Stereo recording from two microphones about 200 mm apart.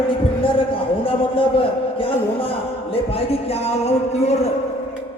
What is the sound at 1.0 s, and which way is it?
A man's voice, 25° left (ahead or behind).